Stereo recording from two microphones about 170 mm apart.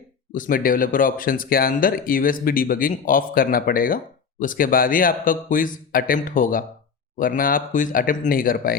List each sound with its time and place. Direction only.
0.3 s speech: 55° left (ahead or behind)